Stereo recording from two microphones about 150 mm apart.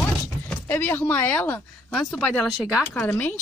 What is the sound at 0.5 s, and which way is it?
A child's voice, 10° left (ahead or behind).